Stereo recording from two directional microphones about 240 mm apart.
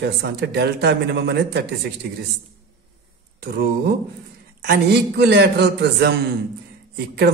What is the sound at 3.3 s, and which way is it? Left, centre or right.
A man's voice, right.